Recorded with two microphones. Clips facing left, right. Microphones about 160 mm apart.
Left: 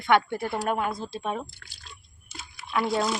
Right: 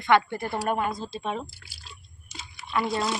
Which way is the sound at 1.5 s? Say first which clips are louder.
Even; 5° right (ahead or behind).